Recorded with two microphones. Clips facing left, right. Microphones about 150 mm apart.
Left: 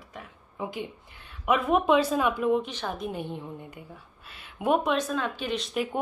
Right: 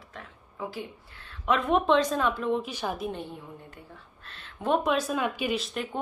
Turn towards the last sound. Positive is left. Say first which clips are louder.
# left 2 dB
turn(degrees=5)  # may be behind; listen again after turning